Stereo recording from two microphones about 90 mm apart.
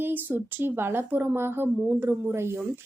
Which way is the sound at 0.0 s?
20° right (ahead or behind).